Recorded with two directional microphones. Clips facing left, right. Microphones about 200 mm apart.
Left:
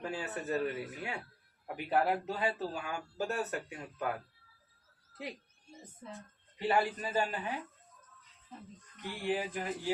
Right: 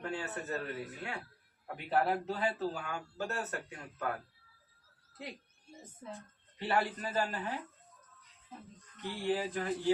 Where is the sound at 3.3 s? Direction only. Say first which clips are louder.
Left 3 dB; 15° left (ahead or behind).